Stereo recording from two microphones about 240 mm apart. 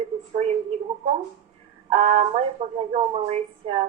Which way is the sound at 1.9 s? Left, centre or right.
Right.